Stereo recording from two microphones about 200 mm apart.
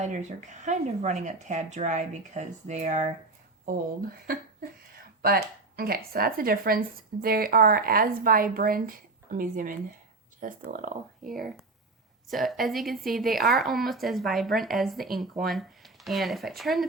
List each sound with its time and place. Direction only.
0.0 s speech: 35° right (ahead or behind)
4.3 s a woman's voice: 45° right (ahead or behind)
11.3 s a woman's voice: centre (ahead or behind)